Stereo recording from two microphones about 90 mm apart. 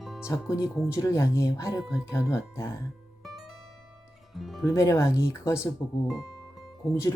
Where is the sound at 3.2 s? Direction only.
5° right (ahead or behind).